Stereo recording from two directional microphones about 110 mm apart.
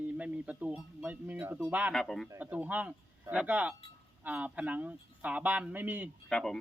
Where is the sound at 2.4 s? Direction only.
15° right (ahead or behind).